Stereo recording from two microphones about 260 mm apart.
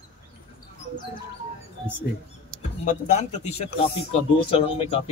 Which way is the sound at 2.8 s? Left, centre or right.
Left.